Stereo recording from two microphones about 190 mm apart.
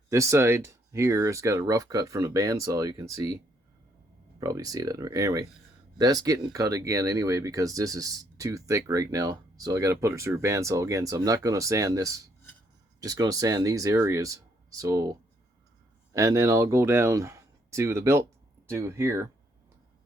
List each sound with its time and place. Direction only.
0.1 s speech: 15° right (ahead or behind)
4.4 s speech: 20° right (ahead or behind)
16.1 s speech: 15° right (ahead or behind)